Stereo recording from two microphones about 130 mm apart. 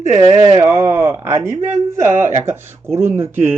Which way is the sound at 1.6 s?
60° right (ahead or behind).